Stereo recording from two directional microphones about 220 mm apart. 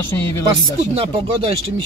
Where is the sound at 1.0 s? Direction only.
25° right (ahead or behind).